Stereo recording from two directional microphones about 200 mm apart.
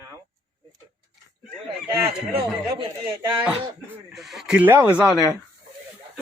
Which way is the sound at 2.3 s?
25° right (ahead or behind).